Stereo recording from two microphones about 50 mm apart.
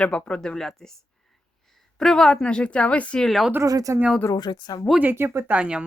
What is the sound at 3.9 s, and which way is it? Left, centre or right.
Speech, right.